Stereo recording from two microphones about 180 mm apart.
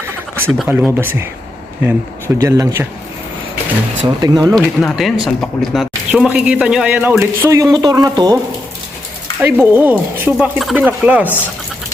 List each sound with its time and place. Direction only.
0.6 s a man's voice: 5° right (ahead or behind)
4.0 s speech: 20° right (ahead or behind)
4.5 s a man's voice: centre (ahead or behind); by 8.4 s 20° right (ahead or behind)
9.4 s a man's voice: 10° right (ahead or behind)
10.6 s a man's voice: centre (ahead or behind)